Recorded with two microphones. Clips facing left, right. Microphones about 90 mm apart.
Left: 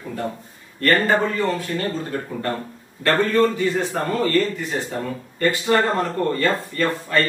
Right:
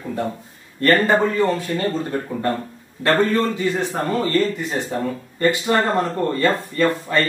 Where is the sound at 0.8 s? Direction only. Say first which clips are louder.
Right 2 dB; 20° right (ahead or behind).